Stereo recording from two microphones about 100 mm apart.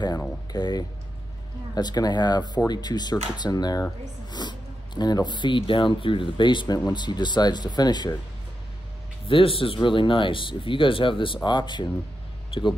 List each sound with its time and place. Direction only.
0.5 s speech: 45° left (ahead or behind)
9.3 s speech: 65° left (ahead or behind)